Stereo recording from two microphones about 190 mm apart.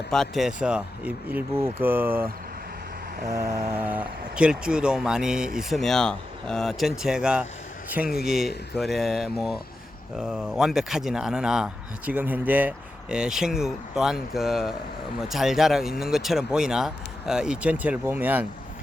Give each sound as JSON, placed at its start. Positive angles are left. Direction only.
{"t": 0.1, "sound": "speech", "side_deg": 0}
{"t": 3.3, "sound": "a man's voice", "side_deg": -15}